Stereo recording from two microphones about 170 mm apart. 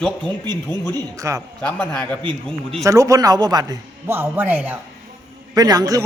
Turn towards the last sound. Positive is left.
turn(degrees=-20)  # may be behind; listen again after turning